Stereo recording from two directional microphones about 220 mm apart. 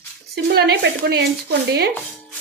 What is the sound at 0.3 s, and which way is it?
A woman's voice, 45° right (ahead or behind).